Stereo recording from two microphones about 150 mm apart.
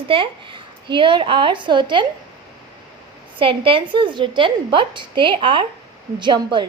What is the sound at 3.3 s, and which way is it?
A woman's voice, 35° right (ahead or behind).